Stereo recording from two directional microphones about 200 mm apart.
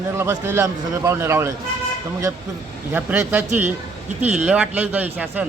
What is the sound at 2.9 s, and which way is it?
Speech, 10° right (ahead or behind).